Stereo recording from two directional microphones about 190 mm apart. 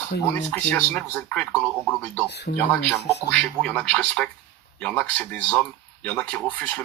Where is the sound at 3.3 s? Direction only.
5° left (ahead or behind).